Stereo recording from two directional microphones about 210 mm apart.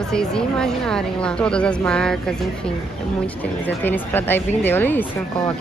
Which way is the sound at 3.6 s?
10° left (ahead or behind).